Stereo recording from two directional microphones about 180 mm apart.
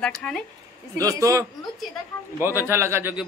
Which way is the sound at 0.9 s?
20° right (ahead or behind).